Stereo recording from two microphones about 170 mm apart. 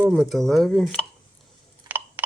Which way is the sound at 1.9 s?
10° right (ahead or behind).